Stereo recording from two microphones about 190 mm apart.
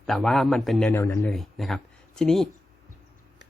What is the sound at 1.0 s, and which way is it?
Speech, 15° left (ahead or behind).